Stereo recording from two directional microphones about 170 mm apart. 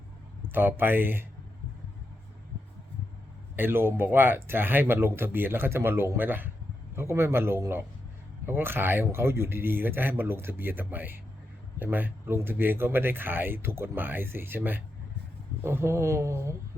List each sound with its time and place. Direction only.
0.4 s speech: 10° right (ahead or behind)
3.5 s speech: 10° right (ahead or behind)